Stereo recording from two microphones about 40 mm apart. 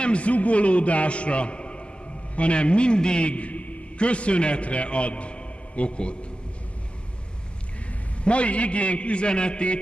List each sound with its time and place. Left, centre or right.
0.0 s a man's voice: left
8.2 s a man's voice: left